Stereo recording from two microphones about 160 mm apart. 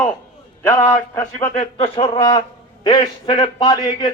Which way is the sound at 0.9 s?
15° left (ahead or behind).